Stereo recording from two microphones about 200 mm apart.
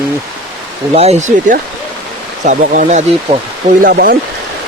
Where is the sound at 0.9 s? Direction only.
30° right (ahead or behind).